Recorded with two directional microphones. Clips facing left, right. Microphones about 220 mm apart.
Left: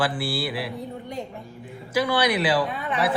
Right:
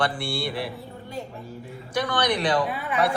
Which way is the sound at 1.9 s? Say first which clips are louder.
Left 2 dB; 5° left (ahead or behind).